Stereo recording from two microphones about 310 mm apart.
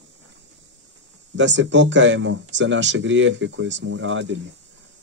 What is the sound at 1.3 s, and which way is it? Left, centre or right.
A man's voice, right.